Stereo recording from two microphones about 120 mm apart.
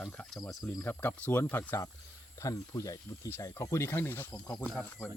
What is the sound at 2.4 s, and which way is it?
Speech, 25° left (ahead or behind).